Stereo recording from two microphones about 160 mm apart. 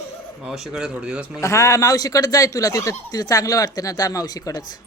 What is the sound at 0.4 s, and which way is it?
Speech, centre (ahead or behind).